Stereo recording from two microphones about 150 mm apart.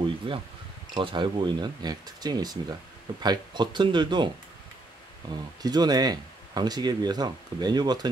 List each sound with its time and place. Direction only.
0.3 s speech: 35° right (ahead or behind)
5.6 s speech: 25° right (ahead or behind)